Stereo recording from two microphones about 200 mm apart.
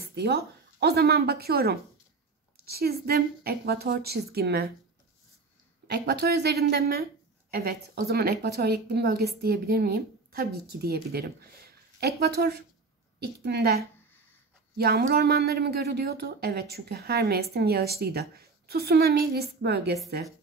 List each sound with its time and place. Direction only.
0.0 s a woman's voice: 55° right (ahead or behind)
5.9 s a woman's voice: 55° right (ahead or behind)